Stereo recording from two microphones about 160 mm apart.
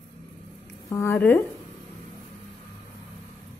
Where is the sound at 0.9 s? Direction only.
15° left (ahead or behind).